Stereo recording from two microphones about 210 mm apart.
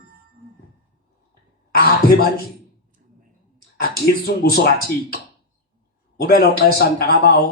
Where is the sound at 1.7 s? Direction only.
45° left (ahead or behind).